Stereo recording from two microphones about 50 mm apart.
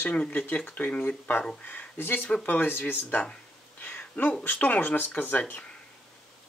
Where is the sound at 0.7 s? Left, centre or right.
Left.